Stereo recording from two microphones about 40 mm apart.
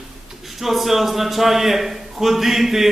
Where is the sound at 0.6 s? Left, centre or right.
Centre.